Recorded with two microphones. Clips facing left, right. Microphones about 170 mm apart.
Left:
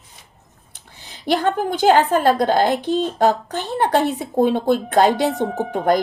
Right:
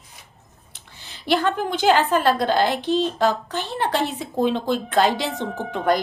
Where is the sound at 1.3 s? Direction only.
45° left (ahead or behind).